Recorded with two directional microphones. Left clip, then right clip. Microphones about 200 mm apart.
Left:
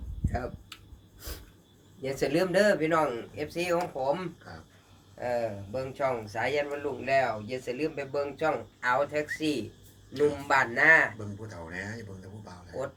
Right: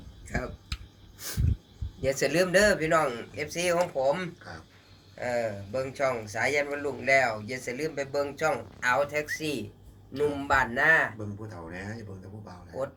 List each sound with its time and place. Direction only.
2.0 s a man's voice: 20° right (ahead or behind)
5.2 s a man's voice: 15° right (ahead or behind)
11.4 s a man's voice: 5° left (ahead or behind)